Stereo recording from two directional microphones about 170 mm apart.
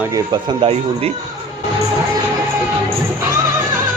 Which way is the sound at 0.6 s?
35° right (ahead or behind).